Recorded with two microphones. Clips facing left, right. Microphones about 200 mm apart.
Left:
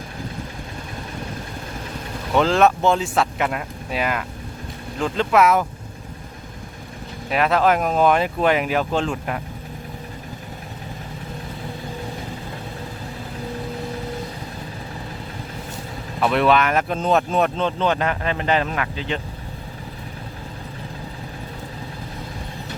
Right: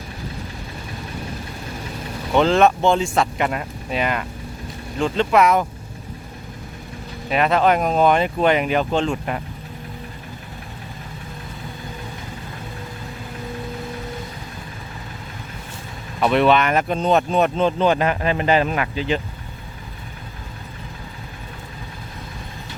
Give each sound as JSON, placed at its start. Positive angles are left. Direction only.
{"t": 2.3, "sound": "speech", "side_deg": 0}
{"t": 7.3, "sound": "speech", "side_deg": 0}
{"t": 16.2, "sound": "speech", "side_deg": 0}